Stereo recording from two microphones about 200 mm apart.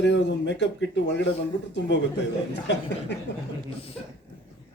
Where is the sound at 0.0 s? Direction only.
60° left (ahead or behind).